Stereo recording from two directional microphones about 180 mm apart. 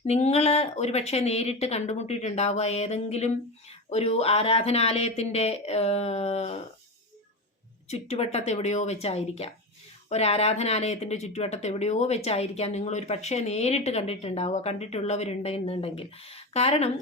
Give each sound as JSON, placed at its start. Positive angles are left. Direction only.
{"t": 0.1, "sound": "speech", "side_deg": 35}
{"t": 7.9, "sound": "speech", "side_deg": 35}